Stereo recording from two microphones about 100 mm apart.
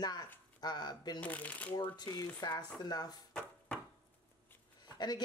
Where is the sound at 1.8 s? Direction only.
40° left (ahead or behind).